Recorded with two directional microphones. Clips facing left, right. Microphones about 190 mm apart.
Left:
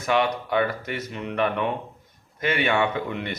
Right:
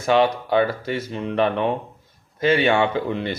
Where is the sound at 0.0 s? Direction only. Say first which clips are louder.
Right 5 dB; 30° right (ahead or behind).